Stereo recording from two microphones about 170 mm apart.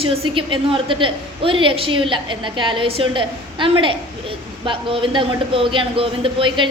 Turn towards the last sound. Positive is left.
turn(degrees=-30)  # may be behind; listen again after turning